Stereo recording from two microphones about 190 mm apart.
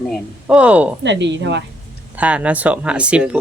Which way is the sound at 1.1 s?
70° right (ahead or behind).